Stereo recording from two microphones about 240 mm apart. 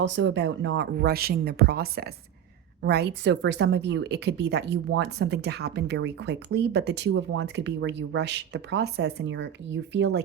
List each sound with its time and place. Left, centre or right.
0.0 s speech: right